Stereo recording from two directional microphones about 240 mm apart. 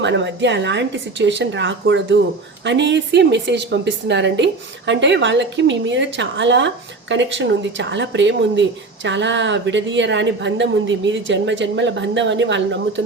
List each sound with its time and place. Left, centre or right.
0.0 s a woman's voice: right